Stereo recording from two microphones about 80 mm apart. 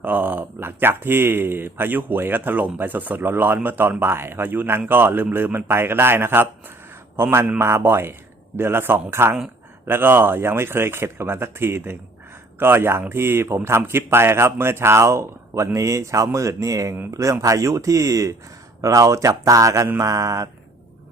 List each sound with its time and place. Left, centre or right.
0.0 s a man's voice: right